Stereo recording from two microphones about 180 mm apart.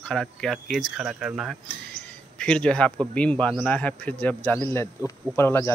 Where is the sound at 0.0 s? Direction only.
5° left (ahead or behind).